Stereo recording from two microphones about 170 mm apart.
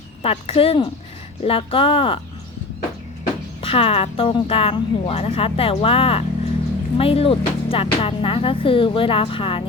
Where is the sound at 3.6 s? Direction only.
35° left (ahead or behind).